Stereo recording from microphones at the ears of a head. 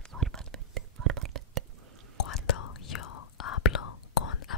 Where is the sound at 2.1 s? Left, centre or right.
Left.